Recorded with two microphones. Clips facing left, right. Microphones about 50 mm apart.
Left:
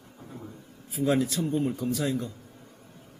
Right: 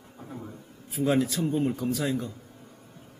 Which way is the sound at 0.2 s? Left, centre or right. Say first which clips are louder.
Right 3 dB; centre.